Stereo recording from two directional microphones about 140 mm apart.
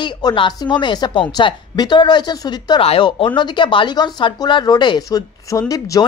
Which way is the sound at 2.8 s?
40° left (ahead or behind).